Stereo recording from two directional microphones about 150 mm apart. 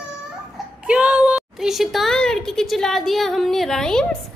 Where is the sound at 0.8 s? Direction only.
10° right (ahead or behind).